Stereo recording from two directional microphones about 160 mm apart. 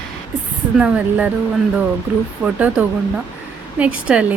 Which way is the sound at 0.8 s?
5° right (ahead or behind).